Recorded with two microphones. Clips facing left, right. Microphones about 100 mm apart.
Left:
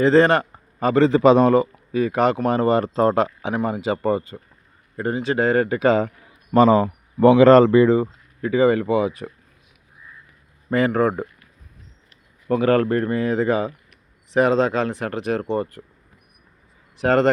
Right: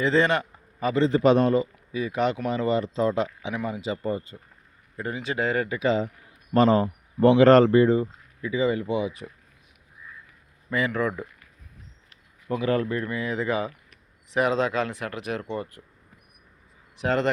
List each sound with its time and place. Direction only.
0.0 s a man's voice: 40° left (ahead or behind)
1.0 s a man's voice: 90° left
1.9 s speech: 50° left (ahead or behind); by 4.4 s 70° left (ahead or behind)
5.1 s speech: 35° left (ahead or behind); by 6.1 s 55° left (ahead or behind)
6.5 s speech: 70° left (ahead or behind)
7.9 s speech: 80° left; by 9.3 s 55° left (ahead or behind)
10.7 s speech: 40° left (ahead or behind)
12.5 s speech: 55° left (ahead or behind)
17.0 s speech: 45° left (ahead or behind)